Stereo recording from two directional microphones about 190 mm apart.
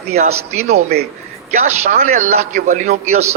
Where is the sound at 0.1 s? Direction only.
35° right (ahead or behind).